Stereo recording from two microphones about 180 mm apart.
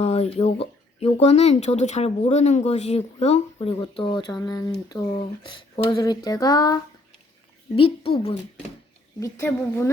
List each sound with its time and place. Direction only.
0.0 s speech: 35° left (ahead or behind)
4.9 s a sound: 25° left (ahead or behind)
7.8 s speech: 30° left (ahead or behind)
9.2 s a woman's voice: 15° left (ahead or behind)